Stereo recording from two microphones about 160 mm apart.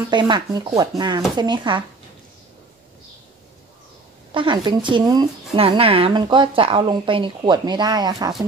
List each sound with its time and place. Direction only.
0.1 s speech: 30° right (ahead or behind)
4.3 s speech: 30° right (ahead or behind)
5.6 s speech: 35° right (ahead or behind)